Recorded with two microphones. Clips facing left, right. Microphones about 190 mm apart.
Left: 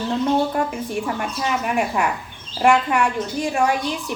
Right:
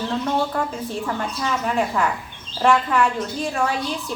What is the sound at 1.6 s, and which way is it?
A woman's voice, 15° left (ahead or behind).